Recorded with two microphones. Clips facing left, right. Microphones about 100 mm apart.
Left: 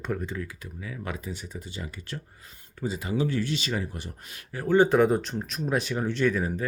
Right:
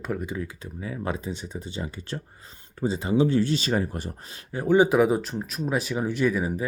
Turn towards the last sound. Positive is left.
turn(degrees=-10)  # may be behind; listen again after turning